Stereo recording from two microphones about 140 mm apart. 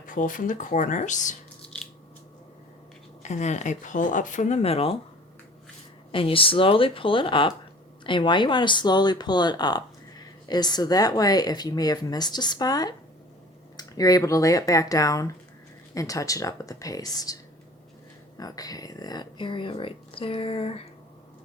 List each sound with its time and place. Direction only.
0.0 s speech: 70° left (ahead or behind)
3.2 s speech: 55° left (ahead or behind)
6.1 s speech: 40° left (ahead or behind)
18.3 s speech: 25° left (ahead or behind); by 20.8 s 45° left (ahead or behind)